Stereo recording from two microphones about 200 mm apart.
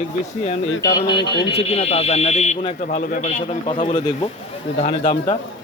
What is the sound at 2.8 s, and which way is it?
Speech, 45° left (ahead or behind).